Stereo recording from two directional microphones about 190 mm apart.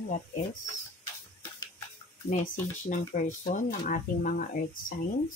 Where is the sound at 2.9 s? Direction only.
45° left (ahead or behind).